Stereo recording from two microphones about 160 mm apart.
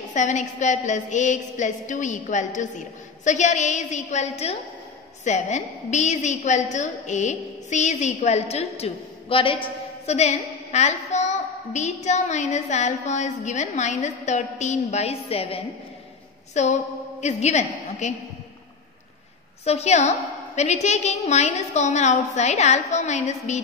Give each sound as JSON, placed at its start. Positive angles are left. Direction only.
{"t": 0.1, "sound": "a woman's voice", "side_deg": 50}
{"t": 19.6, "sound": "a woman's voice", "side_deg": 40}